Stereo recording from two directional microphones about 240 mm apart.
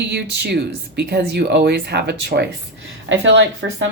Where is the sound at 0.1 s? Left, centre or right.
Right.